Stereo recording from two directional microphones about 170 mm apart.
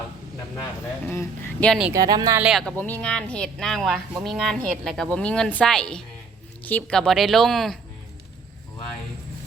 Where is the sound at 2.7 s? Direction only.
10° left (ahead or behind).